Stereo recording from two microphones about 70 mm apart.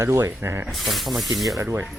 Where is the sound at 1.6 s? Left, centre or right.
Right.